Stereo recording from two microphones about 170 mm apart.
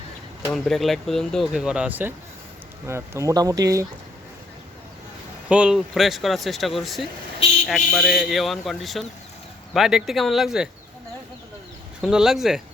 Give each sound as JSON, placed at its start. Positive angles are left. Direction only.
{"t": 0.5, "sound": "speech", "side_deg": 0}
{"t": 5.5, "sound": "speech", "side_deg": -5}
{"t": 12.0, "sound": "speech", "side_deg": -5}